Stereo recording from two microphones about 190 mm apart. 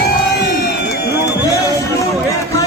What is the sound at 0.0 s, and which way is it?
Crowd, 60° left (ahead or behind).